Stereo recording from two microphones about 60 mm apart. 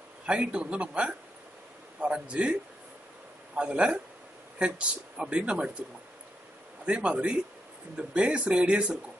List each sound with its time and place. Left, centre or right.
0.3 s speech: centre
3.5 s speech: centre
6.9 s speech: centre